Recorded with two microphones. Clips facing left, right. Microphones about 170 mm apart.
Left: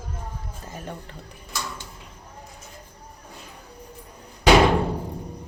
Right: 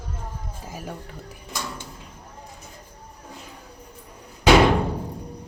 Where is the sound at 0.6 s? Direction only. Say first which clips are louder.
Right 1 dB; 10° right (ahead or behind).